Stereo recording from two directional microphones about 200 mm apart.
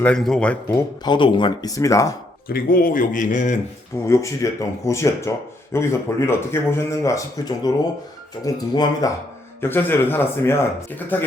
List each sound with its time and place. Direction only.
0.0 s speech: 5° left (ahead or behind)
2.5 s speech: 45° left (ahead or behind)
4.0 s speech: 15° left (ahead or behind)